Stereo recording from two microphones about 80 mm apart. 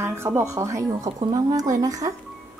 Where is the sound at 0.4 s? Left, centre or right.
Right.